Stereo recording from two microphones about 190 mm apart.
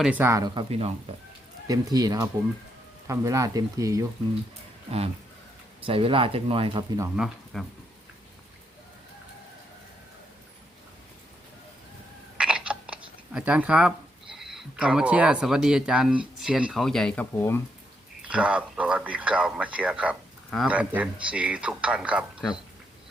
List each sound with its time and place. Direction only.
0.0 s speech: 10° right (ahead or behind); by 1.1 s 30° right (ahead or behind)
1.6 s speech: 20° right (ahead or behind)
5.8 s speech: 30° right (ahead or behind)
7.5 s speech: centre (ahead or behind)
12.4 s speech: 5° right (ahead or behind); by 17.6 s 10° left (ahead or behind)
18.2 s speech: 5° right (ahead or behind)